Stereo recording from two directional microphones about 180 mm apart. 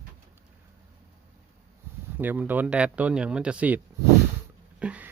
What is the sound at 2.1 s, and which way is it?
Speech, 10° right (ahead or behind).